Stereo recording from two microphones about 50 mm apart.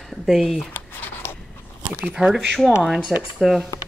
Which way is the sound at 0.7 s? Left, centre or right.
Left.